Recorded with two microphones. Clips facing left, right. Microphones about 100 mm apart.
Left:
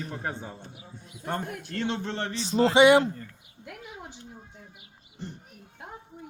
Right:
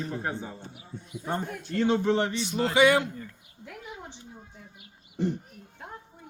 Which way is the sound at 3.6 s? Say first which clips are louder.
Right 1 dB; 5° left (ahead or behind).